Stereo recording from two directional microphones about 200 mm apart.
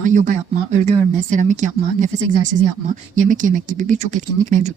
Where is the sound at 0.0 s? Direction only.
40° right (ahead or behind).